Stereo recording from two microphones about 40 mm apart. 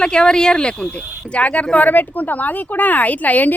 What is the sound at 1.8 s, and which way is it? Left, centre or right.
Speech, left.